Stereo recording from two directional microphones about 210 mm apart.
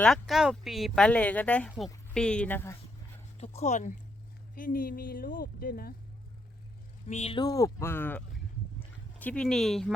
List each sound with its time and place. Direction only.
0.0 s speech: centre (ahead or behind)
3.3 s speech: 30° left (ahead or behind)
7.1 s speech: 30° left (ahead or behind); by 9.9 s centre (ahead or behind)